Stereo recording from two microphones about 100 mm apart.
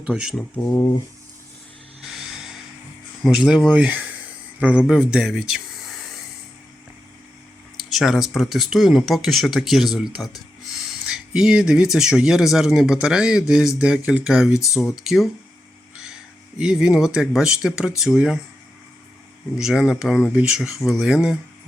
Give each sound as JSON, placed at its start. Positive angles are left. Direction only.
{"t": 0.0, "sound": "speech", "side_deg": -5}
{"t": 0.3, "sound": "speech", "side_deg": 15}
{"t": 2.1, "sound": "a sound", "side_deg": -5}
{"t": 3.2, "sound": "speech", "side_deg": -5}
{"t": 7.9, "sound": "speech", "side_deg": 0}
{"t": 16.6, "sound": "speech", "side_deg": -5}
{"t": 19.5, "sound": "speech", "side_deg": -5}